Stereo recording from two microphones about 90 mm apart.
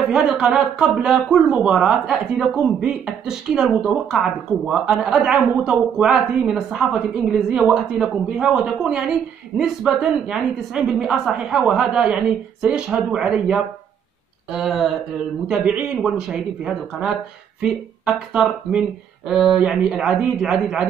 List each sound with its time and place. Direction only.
0.1 s speech: 10° right (ahead or behind)
7.2 s speech: 15° right (ahead or behind)
11.8 s speech: 10° right (ahead or behind)